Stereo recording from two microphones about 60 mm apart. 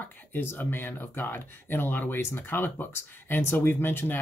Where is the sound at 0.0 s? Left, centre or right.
Left.